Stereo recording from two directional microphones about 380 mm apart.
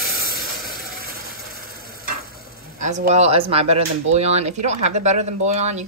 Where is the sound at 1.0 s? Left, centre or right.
Right.